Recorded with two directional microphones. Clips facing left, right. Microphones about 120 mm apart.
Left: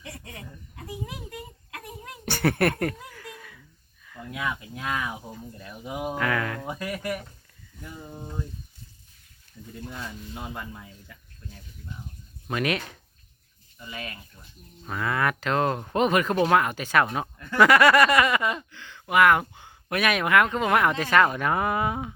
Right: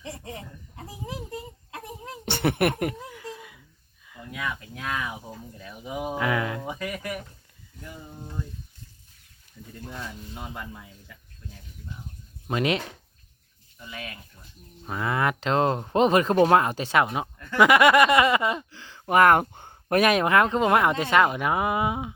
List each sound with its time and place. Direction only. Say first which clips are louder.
0.0 s a sound: right 4 dB; 25° right (ahead or behind)
4.2 s a sound: left 2 dB; centre (ahead or behind)
6.1 s speech: right 2 dB; 15° right (ahead or behind)
6.7 s speech: left 1 dB; centre (ahead or behind)
9.7 s speech: even; centre (ahead or behind)
12.5 s speech: right 2 dB; 25° right (ahead or behind)
13.7 s speech: left 1 dB; centre (ahead or behind)
14.8 s speech: right 1 dB; 20° right (ahead or behind)
17.0 s speech: even; 15° right (ahead or behind)
17.3 s speech: left 1 dB; 5° left (ahead or behind)
17.6 s speech: even; 20° right (ahead or behind)